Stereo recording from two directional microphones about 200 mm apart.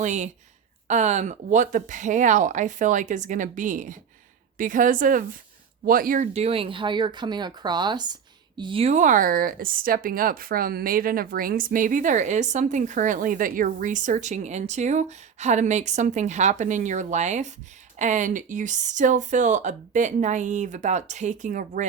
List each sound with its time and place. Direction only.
0.0 s speech: 35° right (ahead or behind)